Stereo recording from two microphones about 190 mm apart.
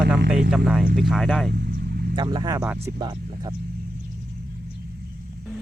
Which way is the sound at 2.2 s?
25° right (ahead or behind).